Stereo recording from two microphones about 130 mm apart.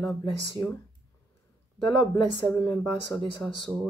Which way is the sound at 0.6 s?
25° right (ahead or behind).